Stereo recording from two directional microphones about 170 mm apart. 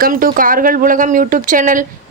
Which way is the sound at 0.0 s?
55° right (ahead or behind).